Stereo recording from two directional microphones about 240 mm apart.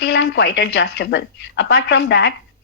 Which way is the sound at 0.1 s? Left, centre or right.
Left.